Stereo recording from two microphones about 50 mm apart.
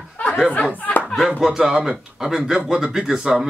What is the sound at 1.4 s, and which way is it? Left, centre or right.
Speech, centre.